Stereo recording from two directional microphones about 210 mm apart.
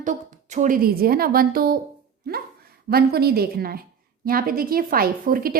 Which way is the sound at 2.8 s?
45° right (ahead or behind).